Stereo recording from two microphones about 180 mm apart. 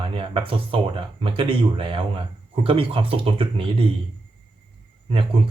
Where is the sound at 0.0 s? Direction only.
30° right (ahead or behind).